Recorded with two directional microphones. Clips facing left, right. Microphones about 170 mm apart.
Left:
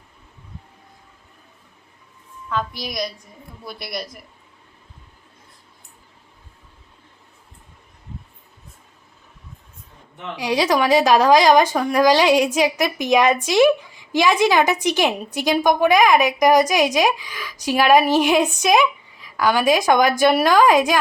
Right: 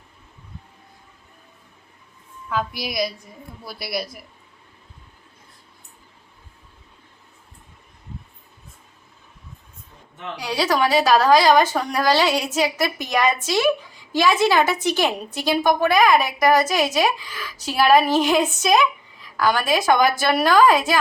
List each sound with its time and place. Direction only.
2.5 s a man's voice: 5° right (ahead or behind)
10.4 s a woman's voice: 20° left (ahead or behind)